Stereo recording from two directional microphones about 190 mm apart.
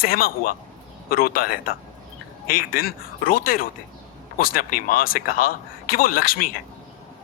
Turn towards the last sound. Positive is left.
turn(degrees=50)  # may be behind; listen again after turning